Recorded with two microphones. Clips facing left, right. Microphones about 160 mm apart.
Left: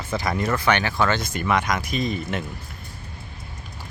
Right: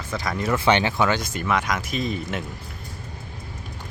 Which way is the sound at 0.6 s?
25° right (ahead or behind).